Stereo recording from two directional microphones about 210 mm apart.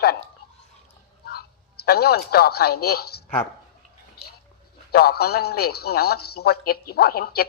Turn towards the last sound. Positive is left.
turn(degrees=50)  # may be behind; listen again after turning